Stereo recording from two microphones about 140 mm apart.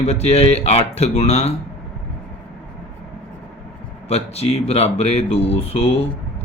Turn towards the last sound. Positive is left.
turn(degrees=45)  # may be behind; listen again after turning